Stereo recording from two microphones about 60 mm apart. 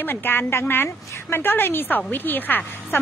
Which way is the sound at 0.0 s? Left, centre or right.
Left.